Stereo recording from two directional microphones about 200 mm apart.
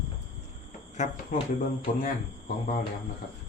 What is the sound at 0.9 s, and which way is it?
Speech, 40° left (ahead or behind).